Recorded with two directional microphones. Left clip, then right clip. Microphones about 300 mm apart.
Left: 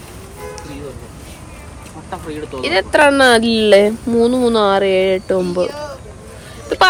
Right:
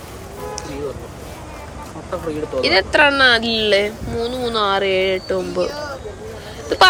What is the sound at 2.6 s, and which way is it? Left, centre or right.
A man's voice, centre.